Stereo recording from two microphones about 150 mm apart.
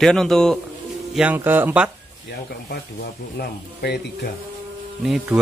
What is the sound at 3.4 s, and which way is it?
Speech, 90° left.